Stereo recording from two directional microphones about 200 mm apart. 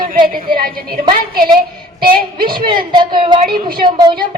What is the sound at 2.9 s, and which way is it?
Speech, 20° right (ahead or behind).